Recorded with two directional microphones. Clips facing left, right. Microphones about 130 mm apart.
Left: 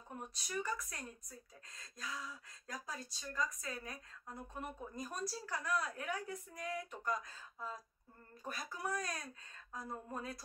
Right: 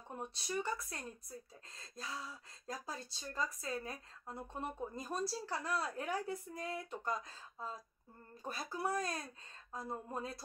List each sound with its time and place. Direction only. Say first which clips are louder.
0.1 s speech: right 3 dB; 30° right (ahead or behind)